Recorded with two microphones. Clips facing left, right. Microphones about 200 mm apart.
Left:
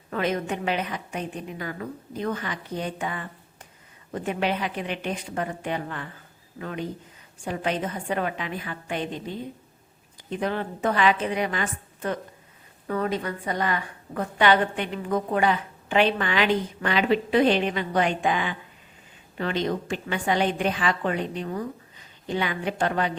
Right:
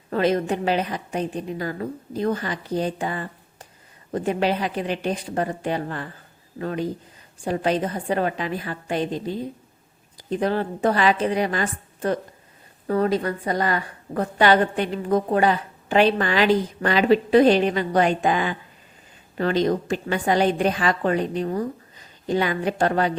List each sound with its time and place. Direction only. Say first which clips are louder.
0.1 s a woman's voice: right 5 dB; 35° right (ahead or behind)